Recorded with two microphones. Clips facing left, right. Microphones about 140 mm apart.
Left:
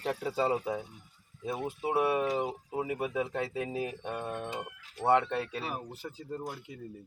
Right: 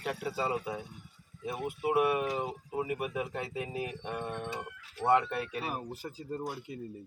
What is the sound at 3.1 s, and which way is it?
Speech, 15° right (ahead or behind).